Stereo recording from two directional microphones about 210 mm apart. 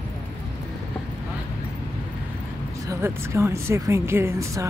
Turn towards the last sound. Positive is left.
turn(degrees=-15)  # may be behind; listen again after turning